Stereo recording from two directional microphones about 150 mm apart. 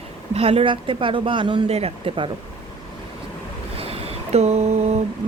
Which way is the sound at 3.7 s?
40° right (ahead or behind).